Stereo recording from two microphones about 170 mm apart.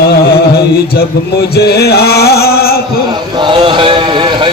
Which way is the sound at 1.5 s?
70° left (ahead or behind).